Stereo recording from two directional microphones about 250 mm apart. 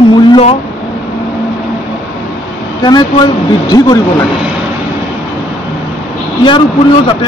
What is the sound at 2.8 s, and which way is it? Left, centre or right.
Speech, centre.